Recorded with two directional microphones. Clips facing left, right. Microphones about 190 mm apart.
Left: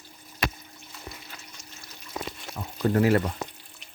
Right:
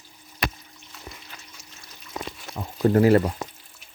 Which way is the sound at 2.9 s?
30° right (ahead or behind).